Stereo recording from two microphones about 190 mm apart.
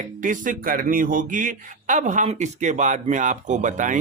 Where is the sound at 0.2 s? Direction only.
45° right (ahead or behind).